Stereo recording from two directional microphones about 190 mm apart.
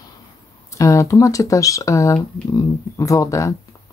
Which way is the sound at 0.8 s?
15° left (ahead or behind).